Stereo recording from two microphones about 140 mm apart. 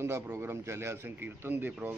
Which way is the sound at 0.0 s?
20° right (ahead or behind).